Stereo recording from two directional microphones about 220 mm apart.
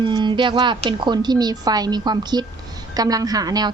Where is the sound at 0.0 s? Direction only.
20° right (ahead or behind).